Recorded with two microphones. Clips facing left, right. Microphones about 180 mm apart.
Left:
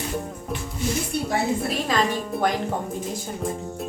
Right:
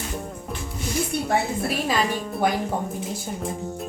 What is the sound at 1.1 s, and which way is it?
Speech, 60° right (ahead or behind).